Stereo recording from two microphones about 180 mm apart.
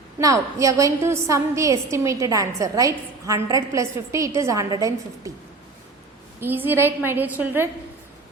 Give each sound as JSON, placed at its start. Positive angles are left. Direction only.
{"t": 0.2, "sound": "a woman's voice", "side_deg": -20}
{"t": 6.4, "sound": "a woman's voice", "side_deg": -10}